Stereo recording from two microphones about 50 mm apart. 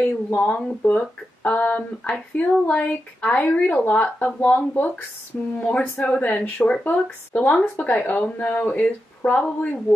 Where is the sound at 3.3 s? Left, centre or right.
Left.